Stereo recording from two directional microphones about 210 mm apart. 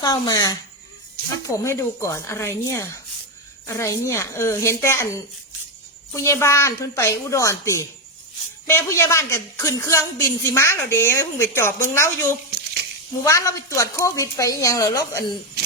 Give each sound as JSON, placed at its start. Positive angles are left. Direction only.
{"t": 0.0, "sound": "a woman's voice", "side_deg": 20}